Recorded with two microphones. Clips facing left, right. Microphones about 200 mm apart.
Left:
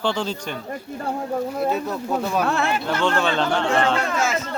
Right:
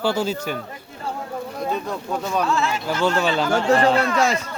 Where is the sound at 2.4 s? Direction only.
60° left (ahead or behind).